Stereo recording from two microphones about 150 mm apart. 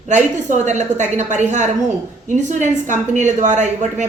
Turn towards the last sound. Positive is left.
turn(degrees=-55)  # may be behind; listen again after turning